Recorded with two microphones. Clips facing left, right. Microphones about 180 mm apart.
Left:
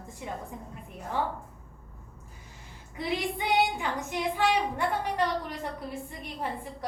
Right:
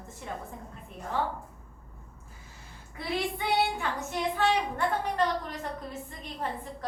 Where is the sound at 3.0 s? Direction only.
15° left (ahead or behind).